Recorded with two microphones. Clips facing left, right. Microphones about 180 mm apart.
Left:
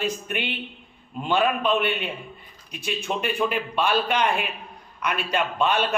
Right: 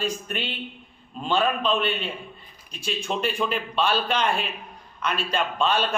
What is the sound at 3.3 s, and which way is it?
A man's voice, 10° left (ahead or behind).